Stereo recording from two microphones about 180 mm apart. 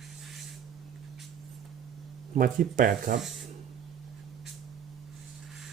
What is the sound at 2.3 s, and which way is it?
Speech, 50° right (ahead or behind).